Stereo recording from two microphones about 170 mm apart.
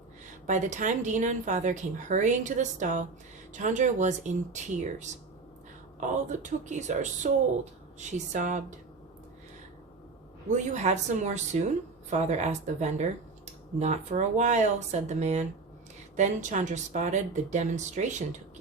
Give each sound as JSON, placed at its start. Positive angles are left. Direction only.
{"t": 0.4, "sound": "speech", "side_deg": -45}
{"t": 10.8, "sound": "speech", "side_deg": -45}